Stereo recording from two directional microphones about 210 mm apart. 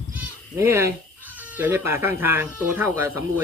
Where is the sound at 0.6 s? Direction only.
10° right (ahead or behind).